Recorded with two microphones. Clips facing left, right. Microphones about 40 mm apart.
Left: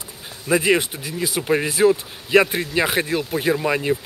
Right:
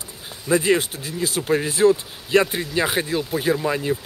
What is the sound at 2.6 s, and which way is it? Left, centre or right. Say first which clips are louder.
Speech: left 2 dB; centre.